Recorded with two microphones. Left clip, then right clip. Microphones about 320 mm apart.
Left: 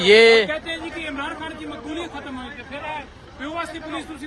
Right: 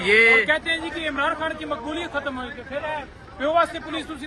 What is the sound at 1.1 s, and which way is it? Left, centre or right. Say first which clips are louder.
Speech: right 6 dB; centre.